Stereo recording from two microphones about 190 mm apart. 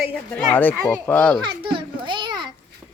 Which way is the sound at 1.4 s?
25° right (ahead or behind).